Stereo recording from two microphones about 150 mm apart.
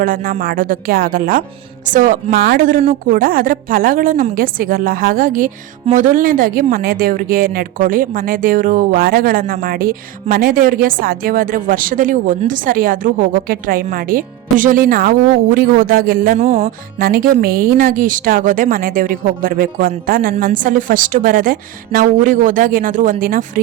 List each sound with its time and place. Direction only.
0.0 s speech: 70° right (ahead or behind)
16.4 s music: 45° right (ahead or behind)
16.6 s a woman's voice: 75° right (ahead or behind)